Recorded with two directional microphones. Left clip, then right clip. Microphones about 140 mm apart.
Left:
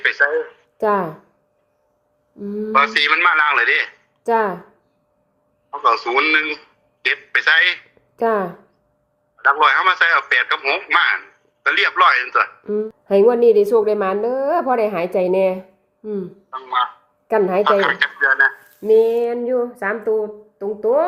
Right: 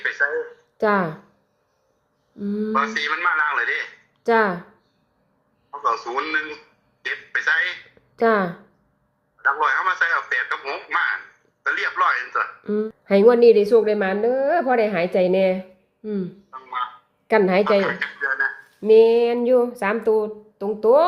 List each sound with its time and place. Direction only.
0.0 s a sound: 20° left (ahead or behind)
0.9 s a woman's voice: centre (ahead or behind)
2.4 s a woman's voice: 5° left (ahead or behind)
2.7 s speech: 25° left (ahead or behind)
4.2 s speech: 5° left (ahead or behind)
5.7 s a man's voice: 20° left (ahead or behind)
8.1 s speech: centre (ahead or behind)
9.4 s speech: 25° left (ahead or behind)
12.6 s a woman's voice: centre (ahead or behind)
16.5 s speech: 25° left (ahead or behind)
17.2 s a woman's voice: 5° right (ahead or behind)
17.6 s speech: 20° left (ahead or behind)
18.9 s a woman's voice: 5° right (ahead or behind)
19.3 s a woman's voice: 20° right (ahead or behind)